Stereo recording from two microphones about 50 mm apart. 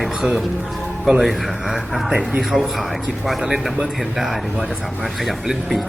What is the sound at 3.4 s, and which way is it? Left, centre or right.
Speech, centre.